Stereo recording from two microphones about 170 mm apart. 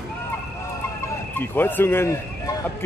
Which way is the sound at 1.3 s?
10° left (ahead or behind).